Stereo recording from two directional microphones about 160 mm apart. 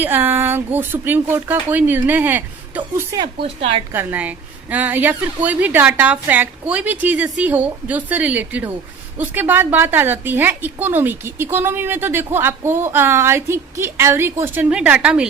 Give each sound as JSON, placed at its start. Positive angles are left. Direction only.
{"t": 0.0, "sound": "a woman's voice", "side_deg": -10}
{"t": 3.2, "sound": "a woman's voice", "side_deg": -35}
{"t": 3.9, "sound": "a woman's voice", "side_deg": -10}